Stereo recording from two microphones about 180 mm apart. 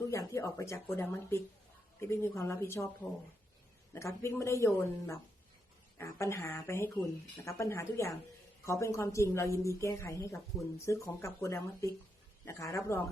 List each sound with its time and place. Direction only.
0.1 s a woman's voice: 15° left (ahead or behind)